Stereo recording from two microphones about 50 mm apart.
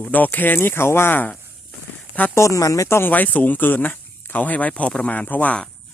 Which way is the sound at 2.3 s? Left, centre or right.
Left.